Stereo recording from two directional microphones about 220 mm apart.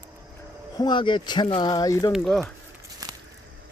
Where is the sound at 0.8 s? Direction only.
20° left (ahead or behind).